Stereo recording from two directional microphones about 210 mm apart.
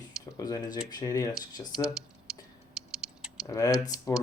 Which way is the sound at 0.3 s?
20° left (ahead or behind).